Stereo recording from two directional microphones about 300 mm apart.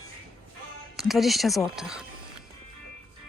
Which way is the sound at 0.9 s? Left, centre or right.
Centre.